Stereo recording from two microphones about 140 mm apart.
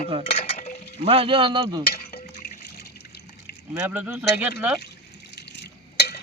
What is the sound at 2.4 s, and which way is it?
Music, 90° left.